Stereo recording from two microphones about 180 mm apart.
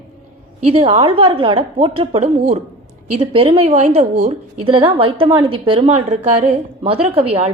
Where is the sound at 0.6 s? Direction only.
35° right (ahead or behind).